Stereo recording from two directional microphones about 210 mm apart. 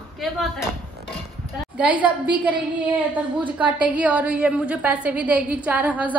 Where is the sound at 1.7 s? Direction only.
5° right (ahead or behind).